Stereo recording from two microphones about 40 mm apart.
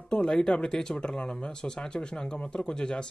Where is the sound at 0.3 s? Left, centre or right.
Centre.